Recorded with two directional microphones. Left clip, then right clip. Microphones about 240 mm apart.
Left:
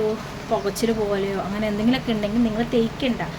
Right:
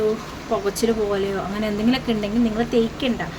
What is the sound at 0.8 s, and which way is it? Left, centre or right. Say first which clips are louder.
A woman's voice: right 2 dB; centre.